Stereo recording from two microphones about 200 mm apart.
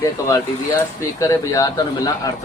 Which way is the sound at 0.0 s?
15° left (ahead or behind).